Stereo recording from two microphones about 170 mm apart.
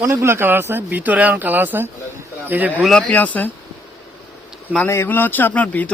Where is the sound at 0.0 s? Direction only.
15° right (ahead or behind).